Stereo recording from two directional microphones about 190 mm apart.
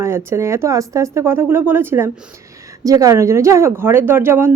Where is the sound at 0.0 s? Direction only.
15° right (ahead or behind).